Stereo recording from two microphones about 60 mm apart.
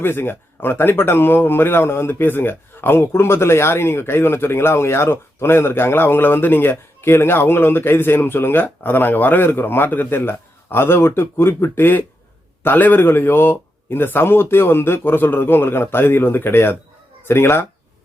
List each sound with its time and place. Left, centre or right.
0.0 s speech: left